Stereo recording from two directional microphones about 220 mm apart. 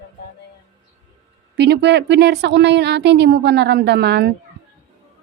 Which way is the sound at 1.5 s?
50° right (ahead or behind).